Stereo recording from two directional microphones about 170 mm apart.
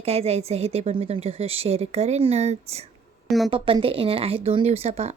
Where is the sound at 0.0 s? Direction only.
35° right (ahead or behind).